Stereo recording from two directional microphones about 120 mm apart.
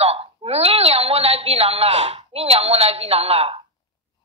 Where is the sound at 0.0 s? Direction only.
55° right (ahead or behind).